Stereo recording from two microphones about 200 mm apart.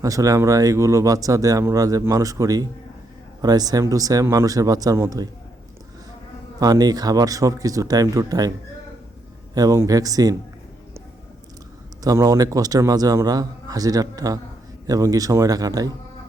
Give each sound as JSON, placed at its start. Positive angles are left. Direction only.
{"t": 0.0, "sound": "speech", "side_deg": -15}
{"t": 6.6, "sound": "speech", "side_deg": -20}
{"t": 9.6, "sound": "speech", "side_deg": -15}
{"t": 12.0, "sound": "speech", "side_deg": -15}